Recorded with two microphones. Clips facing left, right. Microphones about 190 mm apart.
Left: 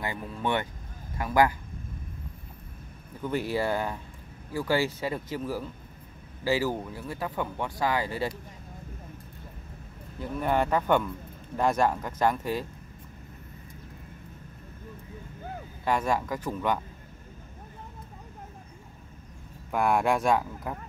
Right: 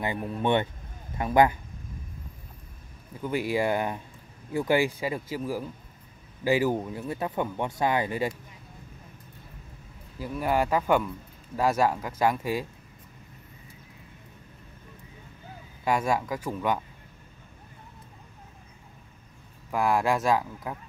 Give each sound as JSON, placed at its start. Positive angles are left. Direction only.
{"t": 0.0, "sound": "speech", "side_deg": -20}
{"t": 3.3, "sound": "speech", "side_deg": -10}
{"t": 10.1, "sound": "speech", "side_deg": -5}
{"t": 15.8, "sound": "speech", "side_deg": -10}
{"t": 19.7, "sound": "speech", "side_deg": 0}